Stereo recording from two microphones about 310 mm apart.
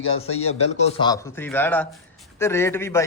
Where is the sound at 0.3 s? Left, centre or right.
Left.